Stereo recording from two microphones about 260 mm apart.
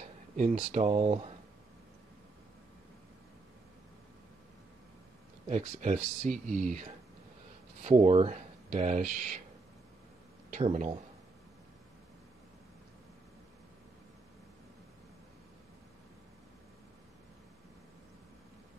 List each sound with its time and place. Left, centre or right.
0.4 s speech: right
5.5 s speech: right
7.8 s speech: right
10.5 s speech: right